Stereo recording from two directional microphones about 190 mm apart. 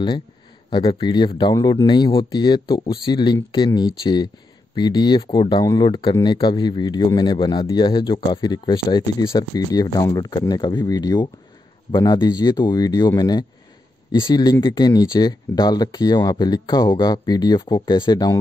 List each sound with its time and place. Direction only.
0.7 s speech: 25° left (ahead or behind)